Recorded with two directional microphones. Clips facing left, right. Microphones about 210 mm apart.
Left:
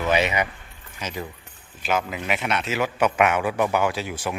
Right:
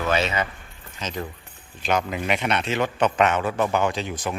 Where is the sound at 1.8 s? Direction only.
5° left (ahead or behind).